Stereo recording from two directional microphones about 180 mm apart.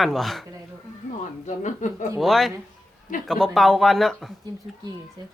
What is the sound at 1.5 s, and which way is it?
Speech, 40° left (ahead or behind).